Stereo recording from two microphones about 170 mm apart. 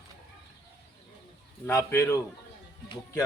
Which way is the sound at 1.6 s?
15° left (ahead or behind).